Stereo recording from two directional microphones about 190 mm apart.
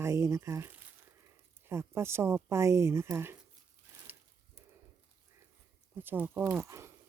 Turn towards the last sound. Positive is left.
turn(degrees=-15)  # may be behind; listen again after turning